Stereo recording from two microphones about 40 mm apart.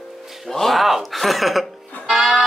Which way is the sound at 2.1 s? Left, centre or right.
Centre.